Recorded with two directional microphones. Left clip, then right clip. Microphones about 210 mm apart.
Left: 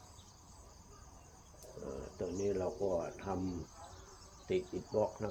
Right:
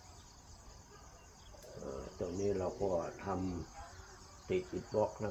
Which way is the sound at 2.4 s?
10° right (ahead or behind).